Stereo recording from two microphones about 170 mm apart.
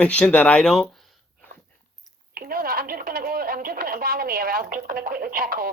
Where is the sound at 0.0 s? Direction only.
5° left (ahead or behind).